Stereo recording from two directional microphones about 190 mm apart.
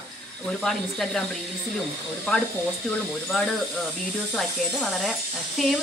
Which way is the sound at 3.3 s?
Centre (ahead or behind).